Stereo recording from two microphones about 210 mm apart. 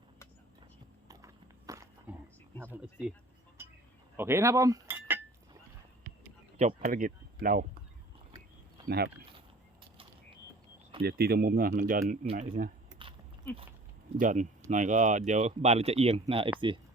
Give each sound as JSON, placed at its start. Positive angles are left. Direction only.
{"t": 1.0, "sound": "a sound", "side_deg": -15}
{"t": 2.6, "sound": "speech", "side_deg": -5}
{"t": 4.2, "sound": "cutlery", "side_deg": -10}
{"t": 6.6, "sound": "speech", "side_deg": -35}
{"t": 11.0, "sound": "speech", "side_deg": -45}
{"t": 13.0, "sound": "biting", "side_deg": -25}
{"t": 14.2, "sound": "speech", "side_deg": -35}